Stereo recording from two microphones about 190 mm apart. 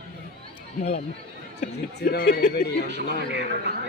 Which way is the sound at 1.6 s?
40° left (ahead or behind).